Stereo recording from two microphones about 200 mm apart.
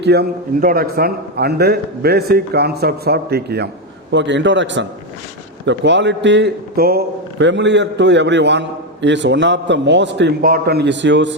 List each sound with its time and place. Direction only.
0.0 s a man's voice: 55° right (ahead or behind)
4.1 s a man's voice: 65° right (ahead or behind)